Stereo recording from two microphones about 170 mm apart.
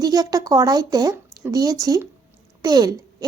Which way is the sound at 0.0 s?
20° right (ahead or behind).